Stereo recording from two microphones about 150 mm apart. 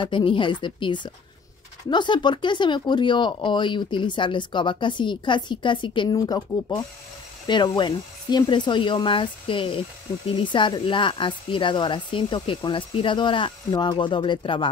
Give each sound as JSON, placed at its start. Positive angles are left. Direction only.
{"t": 0.0, "sound": "speech", "side_deg": 35}